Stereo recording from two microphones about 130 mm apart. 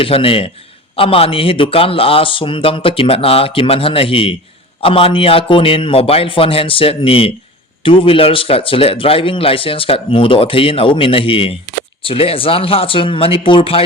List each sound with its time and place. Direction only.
0.0 s speech: 45° left (ahead or behind)